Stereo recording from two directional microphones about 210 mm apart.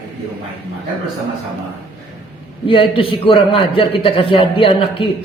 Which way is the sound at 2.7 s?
25° left (ahead or behind).